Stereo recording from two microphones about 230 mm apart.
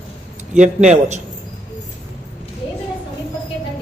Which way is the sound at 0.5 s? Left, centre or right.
Right.